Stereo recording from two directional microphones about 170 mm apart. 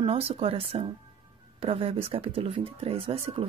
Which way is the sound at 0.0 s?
35° right (ahead or behind).